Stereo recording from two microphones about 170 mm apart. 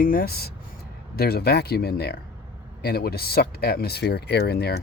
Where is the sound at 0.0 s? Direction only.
55° left (ahead or behind).